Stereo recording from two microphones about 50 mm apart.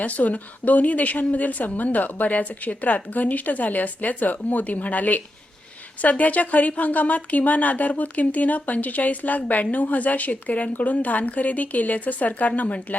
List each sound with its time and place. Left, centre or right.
0.0 s speech: left